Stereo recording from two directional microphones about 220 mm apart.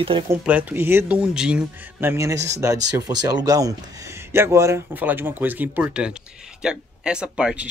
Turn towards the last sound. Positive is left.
turn(degrees=-5)  # may be behind; listen again after turning